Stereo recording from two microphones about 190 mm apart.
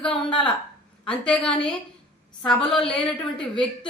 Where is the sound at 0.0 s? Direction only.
5° left (ahead or behind).